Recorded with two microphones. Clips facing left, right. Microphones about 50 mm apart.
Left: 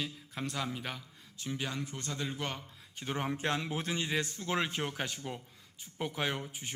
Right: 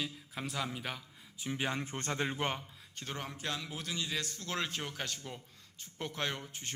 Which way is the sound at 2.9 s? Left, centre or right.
Centre.